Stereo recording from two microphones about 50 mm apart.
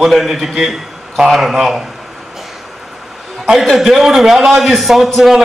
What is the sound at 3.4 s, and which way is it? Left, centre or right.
A man's voice, centre.